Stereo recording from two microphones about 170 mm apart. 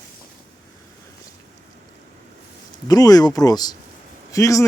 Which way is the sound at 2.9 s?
20° left (ahead or behind).